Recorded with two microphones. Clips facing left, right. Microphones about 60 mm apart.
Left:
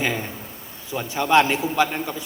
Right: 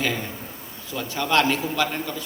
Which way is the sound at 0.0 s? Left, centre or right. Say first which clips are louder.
Left 1 dB; centre.